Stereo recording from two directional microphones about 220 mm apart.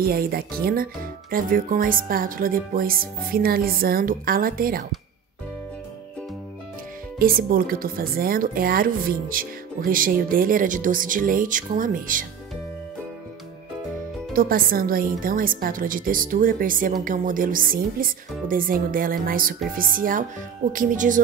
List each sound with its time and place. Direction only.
0.0 s speech: 45° right (ahead or behind)
7.2 s speech: 40° right (ahead or behind)
14.3 s speech: 40° right (ahead or behind)